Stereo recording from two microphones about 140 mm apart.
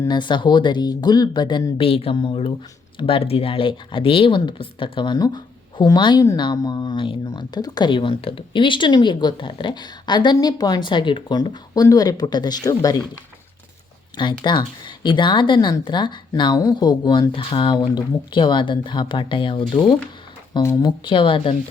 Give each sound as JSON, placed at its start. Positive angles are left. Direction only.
{"t": 0.1, "sound": "speech", "side_deg": 35}
{"t": 14.2, "sound": "speech", "side_deg": 35}
{"t": 20.6, "sound": "speech", "side_deg": 25}